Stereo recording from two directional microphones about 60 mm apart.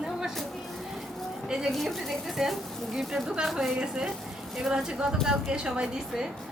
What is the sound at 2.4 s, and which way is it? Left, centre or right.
A woman's voice, centre.